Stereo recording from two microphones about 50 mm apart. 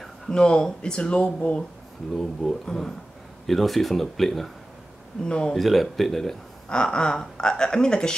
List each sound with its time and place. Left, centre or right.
0.3 s speech: centre
2.1 s speech: centre
5.6 s speech: centre
6.7 s speech: centre